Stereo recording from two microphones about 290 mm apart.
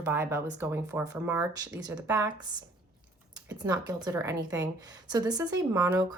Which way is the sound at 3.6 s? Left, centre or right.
Centre.